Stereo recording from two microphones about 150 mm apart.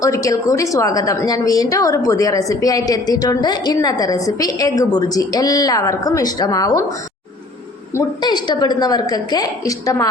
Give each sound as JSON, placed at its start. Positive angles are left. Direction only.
{"t": 0.0, "sound": "a woman's voice", "side_deg": 20}
{"t": 8.2, "sound": "a woman's voice", "side_deg": 30}